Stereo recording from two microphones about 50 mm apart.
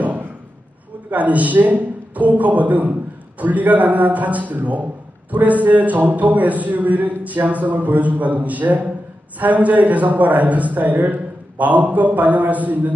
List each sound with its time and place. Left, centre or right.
0.0 s slam: right
1.1 s a man's voice: right